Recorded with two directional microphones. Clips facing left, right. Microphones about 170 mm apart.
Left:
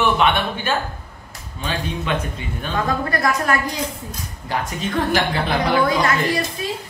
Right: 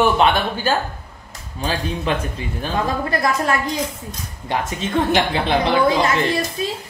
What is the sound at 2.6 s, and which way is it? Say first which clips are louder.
Speech: right 1 dB; 25° right (ahead or behind).